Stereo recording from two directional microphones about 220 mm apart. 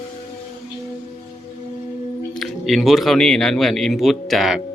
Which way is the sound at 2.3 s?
Centre (ahead or behind).